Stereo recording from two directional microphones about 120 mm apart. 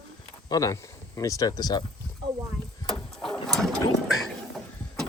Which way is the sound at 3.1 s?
5° left (ahead or behind).